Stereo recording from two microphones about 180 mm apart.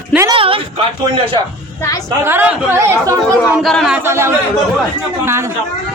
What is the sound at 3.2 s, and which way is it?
Speech, 10° left (ahead or behind).